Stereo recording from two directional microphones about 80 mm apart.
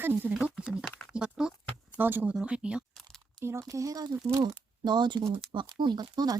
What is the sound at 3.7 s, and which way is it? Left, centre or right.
Speech, right.